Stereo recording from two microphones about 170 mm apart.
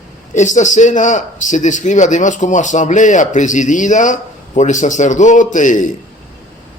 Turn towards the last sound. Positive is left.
turn(degrees=50)  # may be behind; listen again after turning